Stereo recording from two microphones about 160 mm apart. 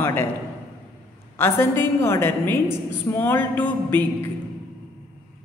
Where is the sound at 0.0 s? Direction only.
15° left (ahead or behind).